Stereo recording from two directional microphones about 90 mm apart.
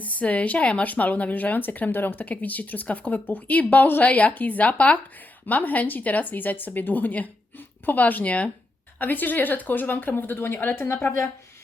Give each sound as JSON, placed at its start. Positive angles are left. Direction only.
{"t": 0.0, "sound": "speech", "side_deg": 15}